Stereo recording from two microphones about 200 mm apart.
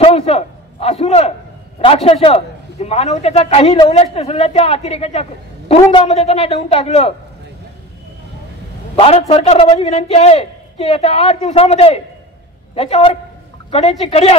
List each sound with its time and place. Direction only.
0.0 s a sound: 30° left (ahead or behind)
2.0 s a man's voice: 30° left (ahead or behind)
8.9 s a man's voice: 30° left (ahead or behind)